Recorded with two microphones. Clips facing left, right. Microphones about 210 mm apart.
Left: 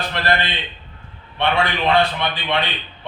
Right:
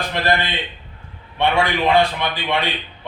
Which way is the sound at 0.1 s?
15° right (ahead or behind).